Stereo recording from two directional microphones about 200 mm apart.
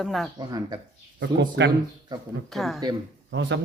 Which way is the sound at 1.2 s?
60° right (ahead or behind).